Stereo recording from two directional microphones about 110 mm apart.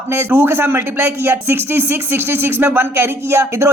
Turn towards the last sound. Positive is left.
turn(degrees=-25)  # may be behind; listen again after turning